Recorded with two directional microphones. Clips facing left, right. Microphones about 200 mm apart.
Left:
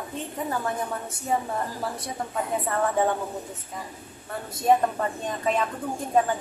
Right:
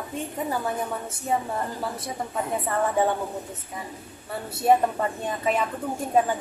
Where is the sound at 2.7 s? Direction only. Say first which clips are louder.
Right 1 dB; 5° right (ahead or behind).